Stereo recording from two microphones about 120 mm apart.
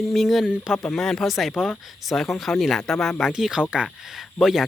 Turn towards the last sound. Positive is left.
turn(degrees=0)  # may be behind; listen again after turning